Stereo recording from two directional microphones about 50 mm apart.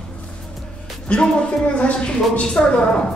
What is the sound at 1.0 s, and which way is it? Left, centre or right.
A woman's voice, left.